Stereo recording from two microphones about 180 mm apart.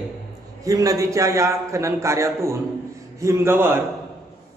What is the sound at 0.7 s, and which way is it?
A man's voice, 20° right (ahead or behind).